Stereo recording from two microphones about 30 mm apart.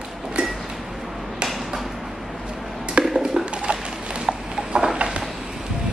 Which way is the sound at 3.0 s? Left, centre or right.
Centre.